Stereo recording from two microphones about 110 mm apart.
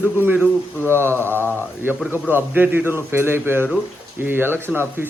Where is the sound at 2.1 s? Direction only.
20° right (ahead or behind).